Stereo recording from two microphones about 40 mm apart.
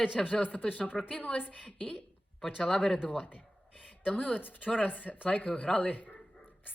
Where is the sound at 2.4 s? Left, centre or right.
Centre.